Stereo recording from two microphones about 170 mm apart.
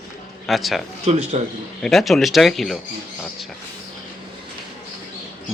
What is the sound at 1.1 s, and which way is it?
Speech, 40° right (ahead or behind).